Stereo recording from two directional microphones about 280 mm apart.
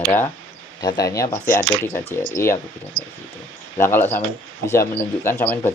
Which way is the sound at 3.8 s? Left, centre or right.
Centre.